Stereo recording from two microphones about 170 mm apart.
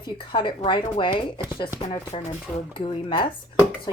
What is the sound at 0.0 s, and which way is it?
Cutlery, 25° left (ahead or behind).